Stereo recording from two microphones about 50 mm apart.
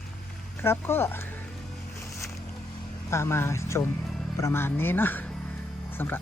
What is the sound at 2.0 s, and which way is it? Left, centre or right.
Boat, left.